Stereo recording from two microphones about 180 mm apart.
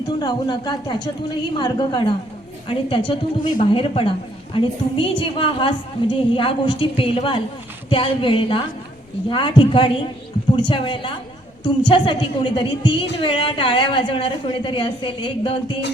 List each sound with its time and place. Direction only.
0.2 s a woman's voice: 25° left (ahead or behind)